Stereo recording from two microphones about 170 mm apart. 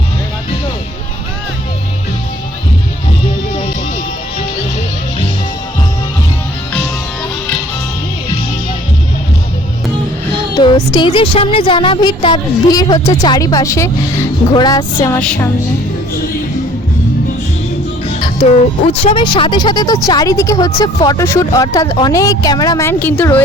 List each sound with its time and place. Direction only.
10.6 s speech: 25° left (ahead or behind)
15.2 s music: 5° left (ahead or behind)
18.9 s speech: 30° left (ahead or behind); by 23.4 s 10° left (ahead or behind)